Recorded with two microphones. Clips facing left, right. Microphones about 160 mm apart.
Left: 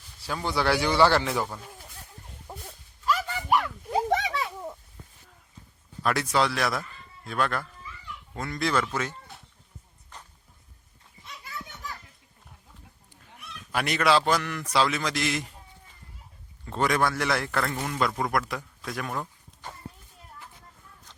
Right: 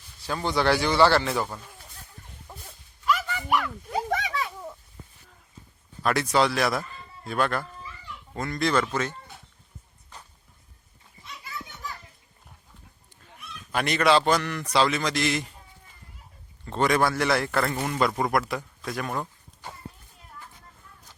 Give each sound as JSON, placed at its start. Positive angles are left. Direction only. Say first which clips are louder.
{"t": 0.3, "sound": "a man's voice", "louder": "right 2 dB", "side_deg": 5}
{"t": 3.1, "sound": "a sound", "louder": "even", "side_deg": 30}
{"t": 6.0, "sound": "a man's voice", "louder": "right 2 dB", "side_deg": 0}
{"t": 13.7, "sound": "a man's voice", "louder": "right 2 dB", "side_deg": 5}
{"t": 16.6, "sound": "a man's voice", "louder": "right 2 dB", "side_deg": 5}